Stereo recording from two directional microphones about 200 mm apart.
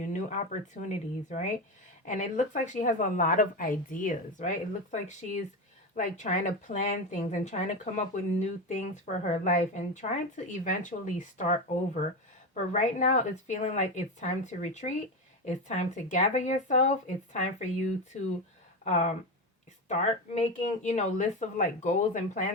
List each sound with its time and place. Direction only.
0.0 s a woman's voice: 40° left (ahead or behind)